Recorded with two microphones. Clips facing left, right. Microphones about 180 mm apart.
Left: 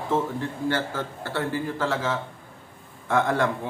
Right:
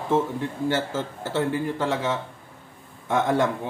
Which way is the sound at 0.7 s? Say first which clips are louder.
Right 2 dB; 20° right (ahead or behind).